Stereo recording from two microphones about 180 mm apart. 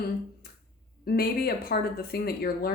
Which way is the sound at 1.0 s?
60° left (ahead or behind).